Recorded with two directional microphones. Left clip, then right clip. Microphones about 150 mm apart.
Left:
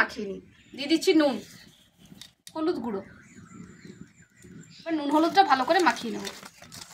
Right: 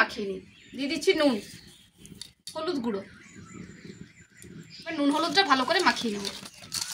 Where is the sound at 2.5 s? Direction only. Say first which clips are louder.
Left 2 dB; 20° left (ahead or behind).